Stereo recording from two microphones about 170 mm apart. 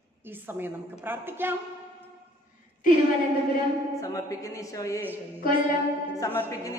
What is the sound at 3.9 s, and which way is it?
Speech, 20° left (ahead or behind).